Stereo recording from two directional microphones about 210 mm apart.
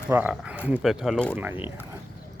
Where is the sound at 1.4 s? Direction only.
10° right (ahead or behind).